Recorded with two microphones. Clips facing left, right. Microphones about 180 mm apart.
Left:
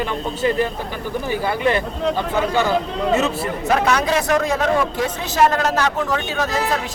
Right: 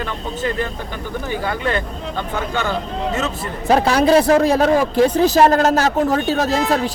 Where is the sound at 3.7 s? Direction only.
30° right (ahead or behind).